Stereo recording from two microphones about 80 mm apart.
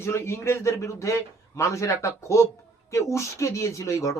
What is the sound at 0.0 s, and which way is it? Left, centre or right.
Speech, left.